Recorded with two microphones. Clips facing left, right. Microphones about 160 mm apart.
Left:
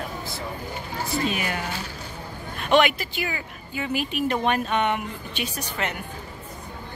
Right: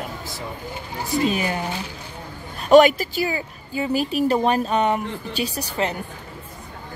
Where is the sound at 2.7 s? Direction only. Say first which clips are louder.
Right 7 dB; 40° right (ahead or behind).